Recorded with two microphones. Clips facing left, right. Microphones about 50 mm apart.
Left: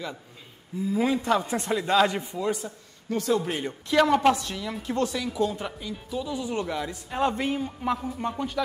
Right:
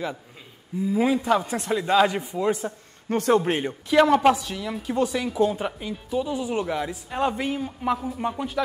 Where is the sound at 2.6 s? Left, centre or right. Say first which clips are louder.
Right 6 dB; right.